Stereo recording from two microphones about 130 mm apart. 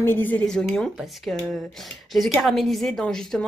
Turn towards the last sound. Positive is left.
turn(degrees=5)  # may be behind; listen again after turning